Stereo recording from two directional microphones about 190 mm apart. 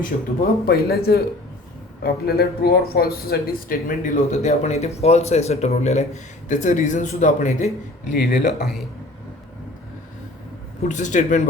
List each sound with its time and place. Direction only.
0.0 s a man's voice: 55° left (ahead or behind)
10.8 s speech: 40° left (ahead or behind)